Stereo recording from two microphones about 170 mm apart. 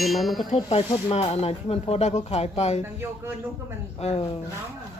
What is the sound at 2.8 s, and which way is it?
Speech, 15° right (ahead or behind).